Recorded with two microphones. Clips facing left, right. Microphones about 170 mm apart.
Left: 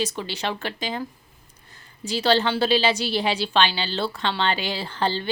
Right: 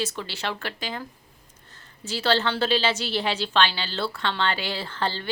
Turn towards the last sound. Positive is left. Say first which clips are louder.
# left 4 dB
turn(degrees=20)  # may be behind; listen again after turning